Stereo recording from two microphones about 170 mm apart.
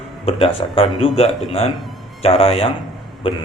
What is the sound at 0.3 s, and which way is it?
A man's voice, 30° left (ahead or behind).